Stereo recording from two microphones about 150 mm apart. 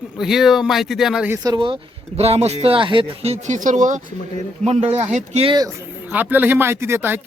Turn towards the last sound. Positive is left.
turn(degrees=-15)  # may be behind; listen again after turning